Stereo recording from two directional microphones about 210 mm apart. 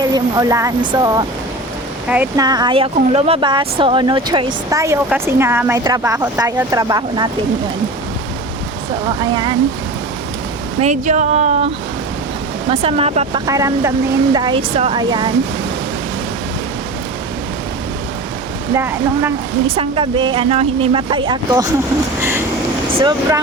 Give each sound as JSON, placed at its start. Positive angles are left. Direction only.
{"t": 0.0, "sound": "speech", "side_deg": -15}
{"t": 2.0, "sound": "speech", "side_deg": -5}
{"t": 2.4, "sound": "speech", "side_deg": -20}
{"t": 9.0, "sound": "speech", "side_deg": -20}
{"t": 10.8, "sound": "speech", "side_deg": -35}
{"t": 12.7, "sound": "speech", "side_deg": -30}
{"t": 13.4, "sound": "speech", "side_deg": -15}
{"t": 18.8, "sound": "speech", "side_deg": -10}
{"t": 19.6, "sound": "speech", "side_deg": -25}
{"t": 23.0, "sound": "speech", "side_deg": -20}